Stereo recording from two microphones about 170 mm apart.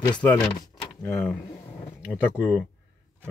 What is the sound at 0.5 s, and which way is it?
Vehicle, 30° left (ahead or behind).